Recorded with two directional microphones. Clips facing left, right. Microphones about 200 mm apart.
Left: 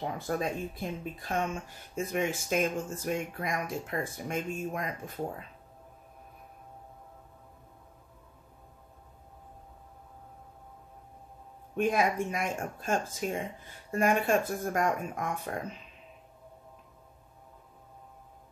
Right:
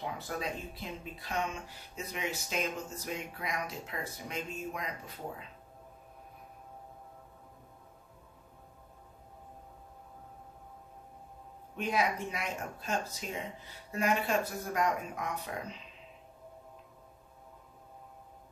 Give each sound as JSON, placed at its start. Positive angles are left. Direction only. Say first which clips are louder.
{"t": 0.4, "sound": "speech", "louder": "left 5 dB", "side_deg": 50}
{"t": 11.7, "sound": "speech", "louder": "left 5 dB", "side_deg": 50}